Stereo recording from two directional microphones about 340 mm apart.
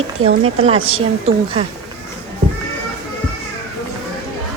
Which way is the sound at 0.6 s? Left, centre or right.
Centre.